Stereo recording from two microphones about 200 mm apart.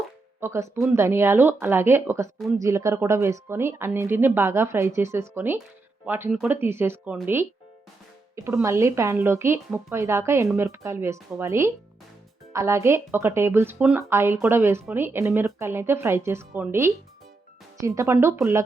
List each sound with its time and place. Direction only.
0.3 s a woman's voice: 15° right (ahead or behind)
8.4 s a woman's voice: 15° right (ahead or behind)